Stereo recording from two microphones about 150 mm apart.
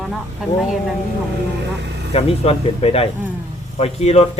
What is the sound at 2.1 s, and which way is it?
A man's voice, 40° left (ahead or behind).